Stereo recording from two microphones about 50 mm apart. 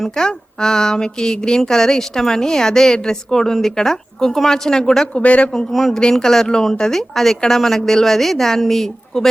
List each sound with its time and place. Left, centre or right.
0.0 s speech: centre
5.1 s speech: left
5.5 s speech: centre